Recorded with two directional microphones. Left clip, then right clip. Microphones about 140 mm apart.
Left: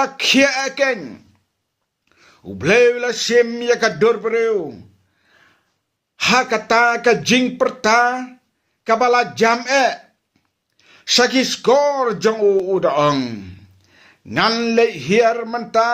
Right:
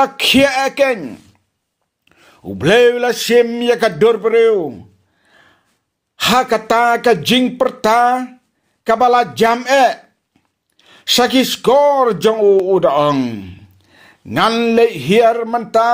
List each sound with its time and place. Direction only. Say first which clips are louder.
0.0 s speech: right 3 dB; 40° right (ahead or behind)
2.0 s a man's voice: right 6 dB; 45° right (ahead or behind)